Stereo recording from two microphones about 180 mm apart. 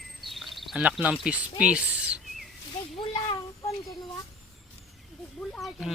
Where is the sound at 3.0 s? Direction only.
30° left (ahead or behind).